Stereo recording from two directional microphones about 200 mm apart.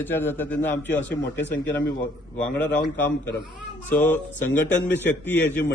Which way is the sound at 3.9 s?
10° left (ahead or behind).